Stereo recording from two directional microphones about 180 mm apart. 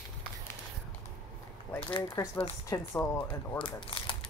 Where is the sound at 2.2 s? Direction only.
15° left (ahead or behind).